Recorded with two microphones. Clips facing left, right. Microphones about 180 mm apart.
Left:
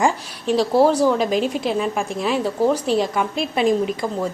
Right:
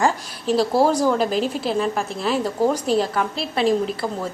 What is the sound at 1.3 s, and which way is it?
Speech, 40° right (ahead or behind).